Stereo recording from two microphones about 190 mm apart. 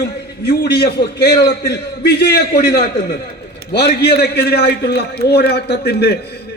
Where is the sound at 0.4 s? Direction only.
60° left (ahead or behind).